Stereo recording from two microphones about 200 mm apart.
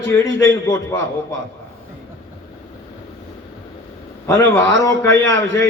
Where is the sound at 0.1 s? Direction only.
15° left (ahead or behind).